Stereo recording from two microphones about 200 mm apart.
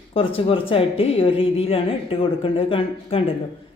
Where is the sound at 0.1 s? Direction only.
25° left (ahead or behind).